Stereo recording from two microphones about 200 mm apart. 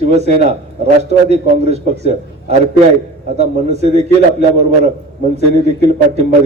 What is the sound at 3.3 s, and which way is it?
A man's voice, 35° right (ahead or behind).